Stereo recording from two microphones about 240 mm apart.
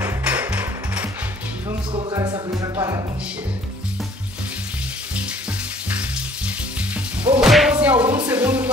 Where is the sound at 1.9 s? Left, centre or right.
Right.